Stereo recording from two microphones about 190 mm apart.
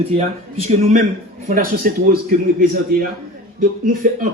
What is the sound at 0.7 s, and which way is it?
Speech, 40° right (ahead or behind).